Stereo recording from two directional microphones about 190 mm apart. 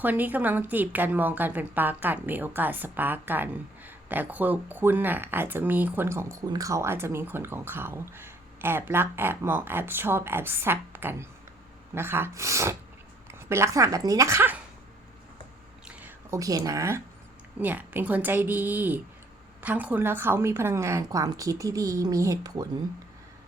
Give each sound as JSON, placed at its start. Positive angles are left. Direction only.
{"t": 0.0, "sound": "a woman's voice", "side_deg": -10}
{"t": 15.8, "sound": "a sound", "side_deg": -10}
{"t": 17.6, "sound": "a woman's voice", "side_deg": -10}